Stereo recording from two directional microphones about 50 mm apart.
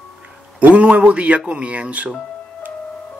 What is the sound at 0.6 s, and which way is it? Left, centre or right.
Speech, right.